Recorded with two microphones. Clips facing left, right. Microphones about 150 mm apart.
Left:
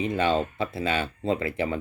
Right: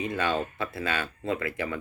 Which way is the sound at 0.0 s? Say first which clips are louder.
Left 4 dB; 25° left (ahead or behind).